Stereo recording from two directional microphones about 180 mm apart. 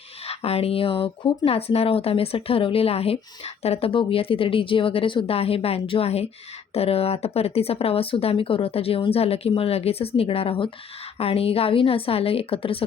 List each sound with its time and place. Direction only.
0.3 s speech: 35° left (ahead or behind)